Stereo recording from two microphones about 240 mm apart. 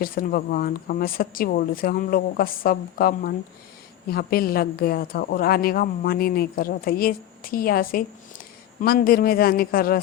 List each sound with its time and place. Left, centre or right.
0.0 s a woman's voice: left